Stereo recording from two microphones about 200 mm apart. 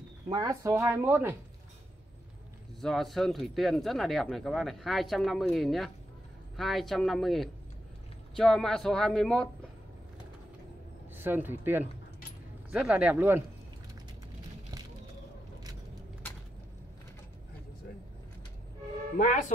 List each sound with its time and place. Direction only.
0.3 s speech: 15° right (ahead or behind)
2.8 s speech: centre (ahead or behind)
11.1 s speech: 10° right (ahead or behind)
19.1 s a man's voice: 40° left (ahead or behind)